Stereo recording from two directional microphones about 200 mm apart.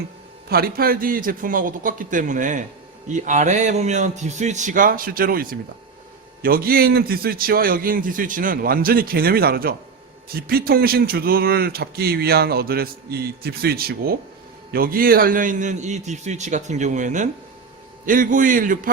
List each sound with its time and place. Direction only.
0.4 s a man's voice: 50° right (ahead or behind)